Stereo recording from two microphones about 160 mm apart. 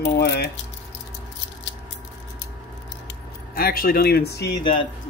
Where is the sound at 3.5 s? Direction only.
70° left (ahead or behind); by 4.5 s 85° left.